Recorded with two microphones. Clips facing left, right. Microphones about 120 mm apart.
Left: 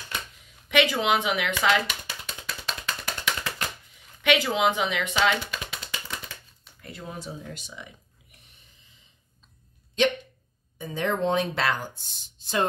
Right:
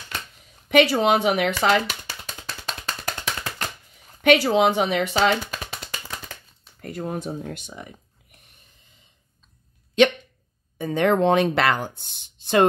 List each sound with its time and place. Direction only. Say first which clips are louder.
0.7 s a sound: right 5 dB; 40° right (ahead or behind)
6.8 s speech: right 9 dB; 50° right (ahead or behind)
10.8 s speech: right 7 dB; 60° right (ahead or behind)